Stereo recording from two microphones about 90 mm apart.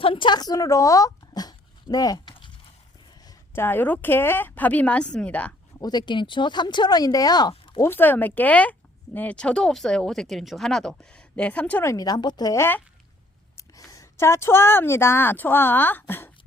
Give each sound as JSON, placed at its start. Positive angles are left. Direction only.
{"t": 0.0, "sound": "a woman's voice", "side_deg": 75}
{"t": 0.3, "sound": "speech", "side_deg": 45}
{"t": 3.5, "sound": "a woman's voice", "side_deg": 25}
{"t": 5.8, "sound": "speech", "side_deg": 50}
{"t": 7.5, "sound": "a sound", "side_deg": 70}
{"t": 7.8, "sound": "a woman's voice", "side_deg": 25}
{"t": 11.9, "sound": "a woman's voice", "side_deg": 45}
{"t": 12.5, "sound": "a woman's voice", "side_deg": 25}
{"t": 13.7, "sound": "a woman's voice", "side_deg": 40}